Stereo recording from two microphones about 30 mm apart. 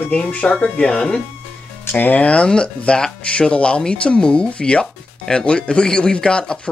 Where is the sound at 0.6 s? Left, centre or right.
Left.